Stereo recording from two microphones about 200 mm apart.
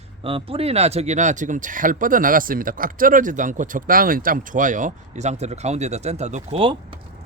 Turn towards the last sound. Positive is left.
turn(degrees=-25)  # may be behind; listen again after turning